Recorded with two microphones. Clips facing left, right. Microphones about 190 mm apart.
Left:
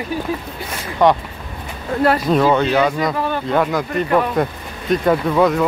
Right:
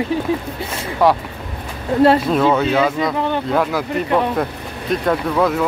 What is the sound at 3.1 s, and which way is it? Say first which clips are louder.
Speech: right 2 dB; 20° right (ahead or behind).